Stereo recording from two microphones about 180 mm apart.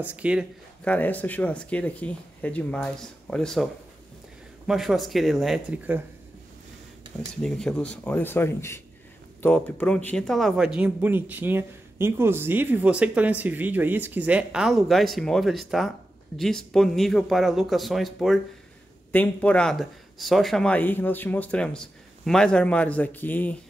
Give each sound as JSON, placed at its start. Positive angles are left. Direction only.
{"t": 0.0, "sound": "speech", "side_deg": -10}
{"t": 0.8, "sound": "speech", "side_deg": 10}
{"t": 4.6, "sound": "speech", "side_deg": 0}
{"t": 7.4, "sound": "speech", "side_deg": 5}